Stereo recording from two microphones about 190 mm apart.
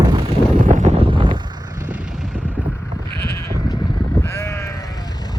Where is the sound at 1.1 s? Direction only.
25° right (ahead or behind).